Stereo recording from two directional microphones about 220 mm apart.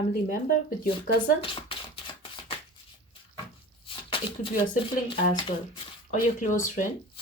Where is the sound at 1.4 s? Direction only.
25° left (ahead or behind).